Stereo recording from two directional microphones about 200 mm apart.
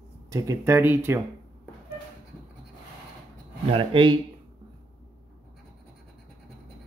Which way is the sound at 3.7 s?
25° right (ahead or behind).